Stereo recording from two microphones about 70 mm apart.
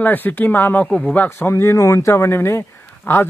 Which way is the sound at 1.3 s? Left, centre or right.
Left.